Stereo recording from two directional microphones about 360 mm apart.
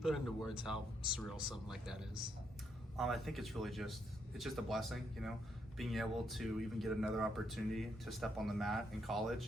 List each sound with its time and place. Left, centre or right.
0.0 s speech: centre